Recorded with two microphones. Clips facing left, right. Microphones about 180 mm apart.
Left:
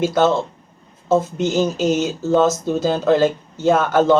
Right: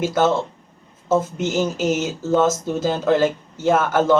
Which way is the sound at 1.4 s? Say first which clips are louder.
Left 3 dB; 5° right (ahead or behind).